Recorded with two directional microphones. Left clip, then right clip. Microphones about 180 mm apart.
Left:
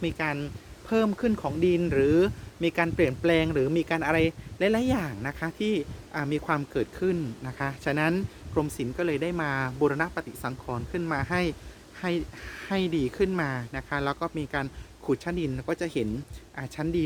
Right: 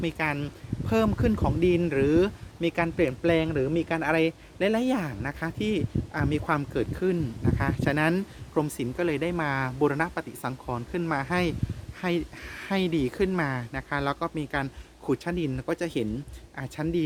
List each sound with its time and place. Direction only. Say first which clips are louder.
0.0 s speech: right 1 dB; 10° right (ahead or behind)